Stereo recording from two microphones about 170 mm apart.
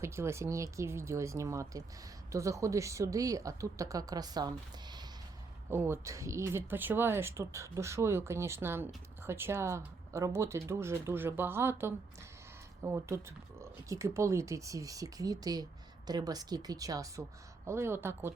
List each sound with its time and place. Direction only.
0.0 s speech: 15° right (ahead or behind)
5.7 s speech: 15° right (ahead or behind)